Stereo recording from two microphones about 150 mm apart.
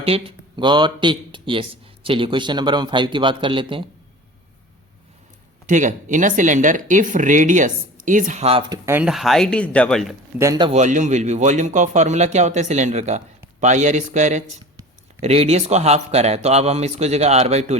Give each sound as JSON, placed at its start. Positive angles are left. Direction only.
{"t": 0.0, "sound": "speech", "side_deg": -40}
{"t": 5.6, "sound": "speech", "side_deg": -55}
{"t": 8.9, "sound": "speech", "side_deg": -10}
{"t": 10.3, "sound": "speech", "side_deg": -20}
{"t": 10.7, "sound": "speech", "side_deg": -55}